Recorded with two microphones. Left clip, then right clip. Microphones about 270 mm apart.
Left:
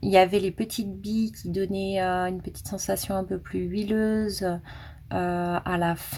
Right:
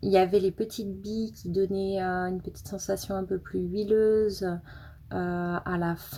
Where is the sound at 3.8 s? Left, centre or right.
Left.